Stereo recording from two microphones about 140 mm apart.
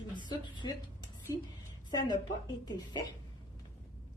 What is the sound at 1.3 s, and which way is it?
Speech, 25° left (ahead or behind).